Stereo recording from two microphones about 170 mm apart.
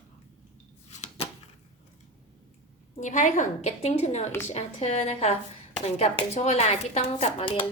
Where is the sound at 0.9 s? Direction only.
45° left (ahead or behind).